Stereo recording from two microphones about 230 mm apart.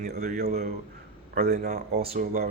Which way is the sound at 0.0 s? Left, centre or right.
Right.